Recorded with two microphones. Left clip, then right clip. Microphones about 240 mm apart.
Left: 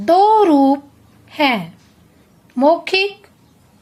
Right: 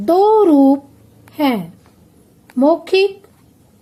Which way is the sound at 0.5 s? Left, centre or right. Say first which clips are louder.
Right 1 dB; left.